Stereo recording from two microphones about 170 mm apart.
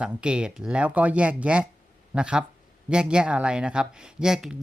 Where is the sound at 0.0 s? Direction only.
5° right (ahead or behind).